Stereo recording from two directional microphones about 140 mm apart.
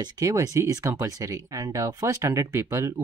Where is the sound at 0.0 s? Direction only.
25° right (ahead or behind).